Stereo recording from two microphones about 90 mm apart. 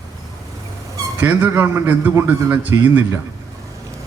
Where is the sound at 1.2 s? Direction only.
20° right (ahead or behind).